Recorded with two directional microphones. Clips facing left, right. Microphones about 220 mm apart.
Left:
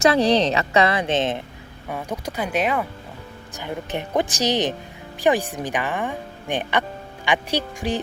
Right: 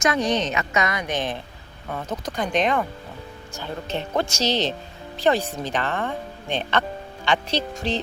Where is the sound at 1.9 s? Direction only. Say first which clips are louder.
Left 1 dB; 10° left (ahead or behind).